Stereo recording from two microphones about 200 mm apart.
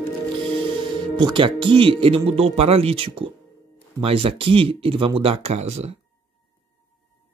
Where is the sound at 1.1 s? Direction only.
25° right (ahead or behind).